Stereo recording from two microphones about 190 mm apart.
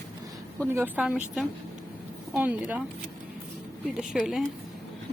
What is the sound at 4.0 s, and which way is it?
Speech, centre (ahead or behind).